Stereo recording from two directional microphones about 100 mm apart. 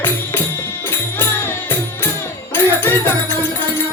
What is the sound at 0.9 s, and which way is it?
Music, 20° left (ahead or behind).